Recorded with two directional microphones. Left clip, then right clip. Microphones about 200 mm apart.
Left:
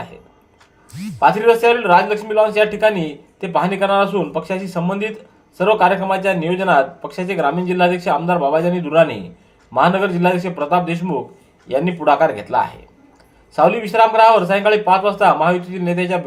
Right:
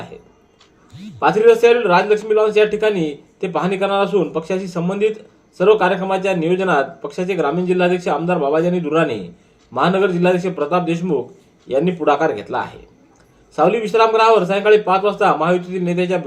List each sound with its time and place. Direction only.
1.2 s a man's voice: 20° left (ahead or behind)